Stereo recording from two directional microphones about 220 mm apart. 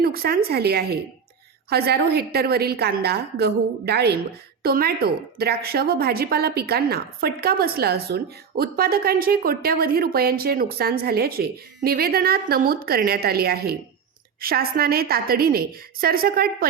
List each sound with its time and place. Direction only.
0.0 s a woman's voice: 45° right (ahead or behind)